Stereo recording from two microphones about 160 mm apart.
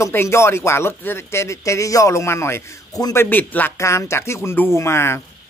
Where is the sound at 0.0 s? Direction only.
15° left (ahead or behind).